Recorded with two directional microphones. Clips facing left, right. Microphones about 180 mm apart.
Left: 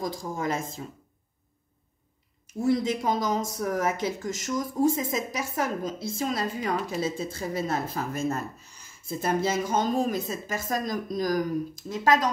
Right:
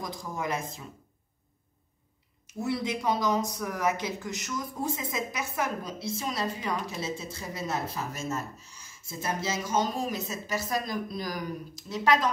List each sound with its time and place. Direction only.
0.0 s speech: 50° left (ahead or behind)
2.6 s speech: 45° left (ahead or behind)